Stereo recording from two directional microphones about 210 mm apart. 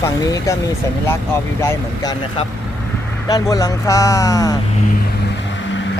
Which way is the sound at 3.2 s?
15° left (ahead or behind).